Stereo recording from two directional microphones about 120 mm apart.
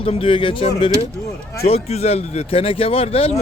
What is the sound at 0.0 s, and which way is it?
Speech, 50° left (ahead or behind).